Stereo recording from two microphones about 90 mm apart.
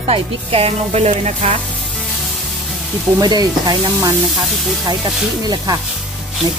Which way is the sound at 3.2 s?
50° right (ahead or behind).